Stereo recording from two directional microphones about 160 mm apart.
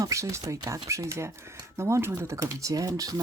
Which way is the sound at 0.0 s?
20° right (ahead or behind).